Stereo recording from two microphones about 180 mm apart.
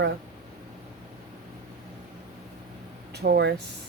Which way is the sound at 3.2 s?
65° right (ahead or behind).